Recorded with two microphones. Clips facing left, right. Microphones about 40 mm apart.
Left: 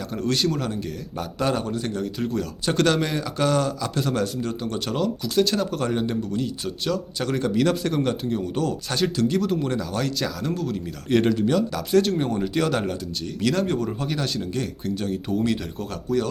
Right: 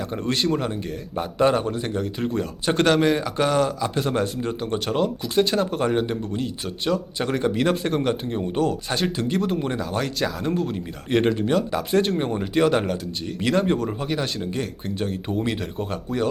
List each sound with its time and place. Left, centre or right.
0.1 s speech: right
2.0 s speech: centre
2.3 s speech: right